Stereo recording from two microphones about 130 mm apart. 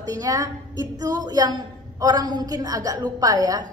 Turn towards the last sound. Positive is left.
turn(degrees=-30)  # may be behind; listen again after turning